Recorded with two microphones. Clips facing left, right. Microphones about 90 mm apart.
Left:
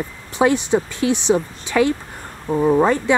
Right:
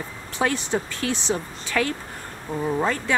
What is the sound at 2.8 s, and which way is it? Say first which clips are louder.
Speech: left 7 dB; 20° left (ahead or behind).